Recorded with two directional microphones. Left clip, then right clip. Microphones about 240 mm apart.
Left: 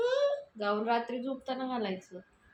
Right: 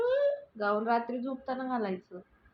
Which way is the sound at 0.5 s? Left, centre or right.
Centre.